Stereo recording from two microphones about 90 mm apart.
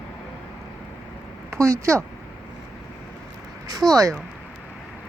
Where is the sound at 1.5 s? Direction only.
35° right (ahead or behind).